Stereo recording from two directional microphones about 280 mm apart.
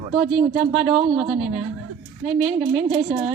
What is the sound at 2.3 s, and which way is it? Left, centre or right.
A woman's voice, centre.